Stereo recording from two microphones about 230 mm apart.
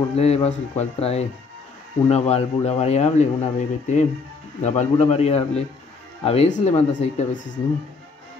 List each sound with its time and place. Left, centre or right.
0.1 s speech: left